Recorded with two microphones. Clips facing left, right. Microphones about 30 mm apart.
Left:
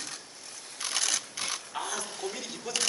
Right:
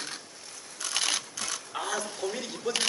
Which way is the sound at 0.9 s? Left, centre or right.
Right.